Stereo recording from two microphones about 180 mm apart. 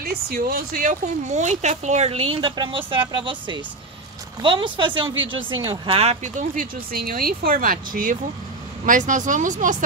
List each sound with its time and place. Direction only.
0.0 s speech: 55° right (ahead or behind)